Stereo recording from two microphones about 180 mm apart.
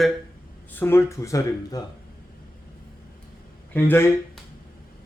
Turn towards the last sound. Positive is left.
turn(degrees=10)  # may be behind; listen again after turning